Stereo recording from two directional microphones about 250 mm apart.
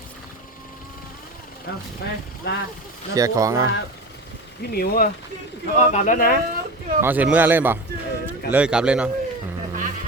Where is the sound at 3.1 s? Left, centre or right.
Centre.